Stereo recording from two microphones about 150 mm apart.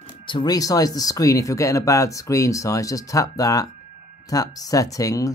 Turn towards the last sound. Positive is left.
turn(degrees=20)  # may be behind; listen again after turning